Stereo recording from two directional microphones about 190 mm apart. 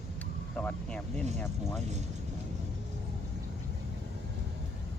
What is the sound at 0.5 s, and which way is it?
Speech, 5° left (ahead or behind).